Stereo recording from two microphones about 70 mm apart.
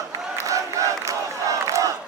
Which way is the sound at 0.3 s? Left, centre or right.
Right.